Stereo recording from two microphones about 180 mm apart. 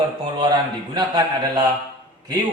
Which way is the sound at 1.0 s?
25° right (ahead or behind).